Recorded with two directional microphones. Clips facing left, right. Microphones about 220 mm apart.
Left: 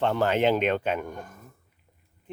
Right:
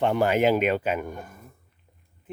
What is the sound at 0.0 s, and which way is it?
Speech, 15° right (ahead or behind).